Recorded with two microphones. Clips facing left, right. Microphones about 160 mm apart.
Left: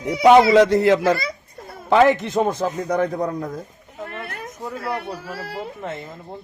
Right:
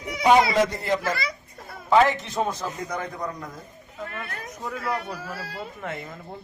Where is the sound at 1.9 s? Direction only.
60° left (ahead or behind).